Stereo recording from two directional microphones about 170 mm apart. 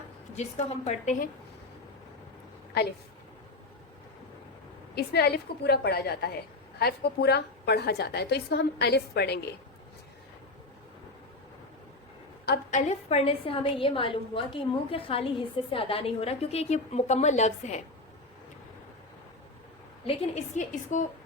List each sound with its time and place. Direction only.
0.3 s a woman's voice: 40° left (ahead or behind)
4.9 s a woman's voice: 70° left (ahead or behind)
12.7 s a woman's voice: 40° left (ahead or behind)
20.1 s a woman's voice: 40° left (ahead or behind)